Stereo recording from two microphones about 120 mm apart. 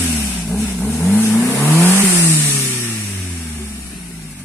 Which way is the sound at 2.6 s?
20° left (ahead or behind).